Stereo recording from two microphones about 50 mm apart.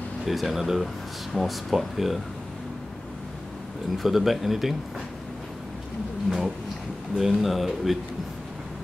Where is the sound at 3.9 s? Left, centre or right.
Centre.